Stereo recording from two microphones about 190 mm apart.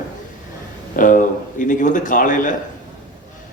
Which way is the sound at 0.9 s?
45° left (ahead or behind).